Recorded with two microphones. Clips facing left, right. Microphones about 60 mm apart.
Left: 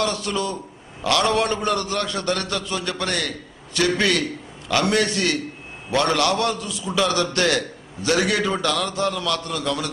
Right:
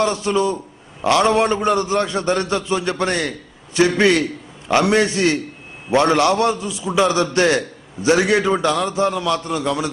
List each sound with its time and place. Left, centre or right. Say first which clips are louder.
0.0 s a man's voice: right 6 dB; right